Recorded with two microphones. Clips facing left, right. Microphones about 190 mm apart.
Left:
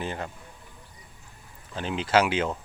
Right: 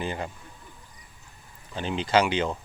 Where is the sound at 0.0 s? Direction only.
Centre (ahead or behind).